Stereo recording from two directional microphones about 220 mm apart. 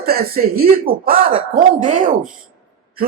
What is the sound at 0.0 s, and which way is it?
A man's voice, 45° right (ahead or behind).